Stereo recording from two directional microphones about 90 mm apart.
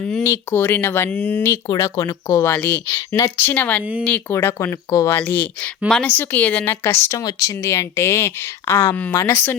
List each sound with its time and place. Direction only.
0.2 s speech: 30° left (ahead or behind)
1.6 s speech: 45° left (ahead or behind); by 3.8 s 20° left (ahead or behind)
4.3 s speech: 30° left (ahead or behind)
5.1 s speech: 20° left (ahead or behind)
7.2 s speech: 40° left (ahead or behind); by 9.6 s 25° left (ahead or behind)